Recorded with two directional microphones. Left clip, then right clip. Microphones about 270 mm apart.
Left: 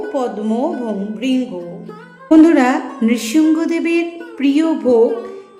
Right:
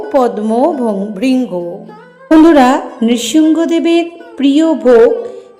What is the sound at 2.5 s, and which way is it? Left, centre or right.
A woman's voice, centre.